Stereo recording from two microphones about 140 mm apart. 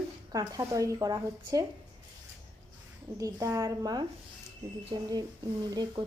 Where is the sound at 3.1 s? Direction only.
25° right (ahead or behind).